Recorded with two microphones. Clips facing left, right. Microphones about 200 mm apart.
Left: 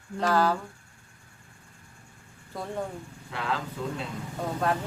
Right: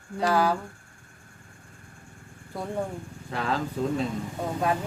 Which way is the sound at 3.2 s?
40° right (ahead or behind).